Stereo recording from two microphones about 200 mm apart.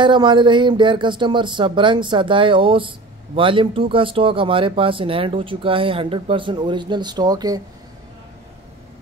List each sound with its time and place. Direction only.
0.0 s speech: 25° right (ahead or behind)